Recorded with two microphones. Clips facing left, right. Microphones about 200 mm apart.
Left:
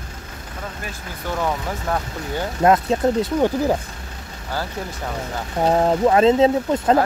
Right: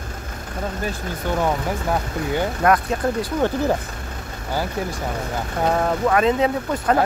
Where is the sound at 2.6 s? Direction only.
25° left (ahead or behind).